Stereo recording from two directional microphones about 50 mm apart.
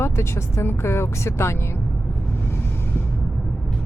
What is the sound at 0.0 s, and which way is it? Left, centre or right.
Speech, left.